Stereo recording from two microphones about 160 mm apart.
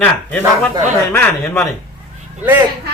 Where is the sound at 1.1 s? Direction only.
15° left (ahead or behind).